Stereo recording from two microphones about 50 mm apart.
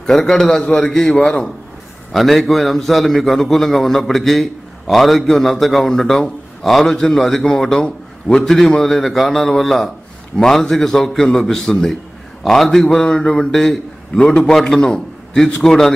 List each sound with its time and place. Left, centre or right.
0.0 s a man's voice: centre
2.1 s a man's voice: centre